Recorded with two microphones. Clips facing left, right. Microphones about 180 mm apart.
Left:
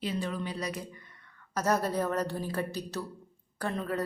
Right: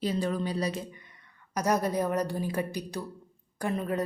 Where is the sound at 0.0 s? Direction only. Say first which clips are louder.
Right 4 dB; 40° right (ahead or behind).